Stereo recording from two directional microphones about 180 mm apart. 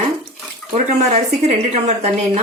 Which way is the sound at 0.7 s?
40° right (ahead or behind).